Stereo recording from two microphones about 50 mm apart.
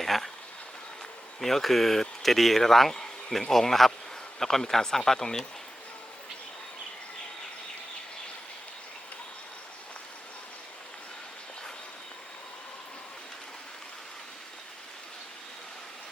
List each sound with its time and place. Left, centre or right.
0.0 s vehicle: centre
1.4 s speech: centre